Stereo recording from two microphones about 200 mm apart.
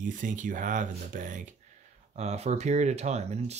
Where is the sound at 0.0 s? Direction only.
40° right (ahead or behind).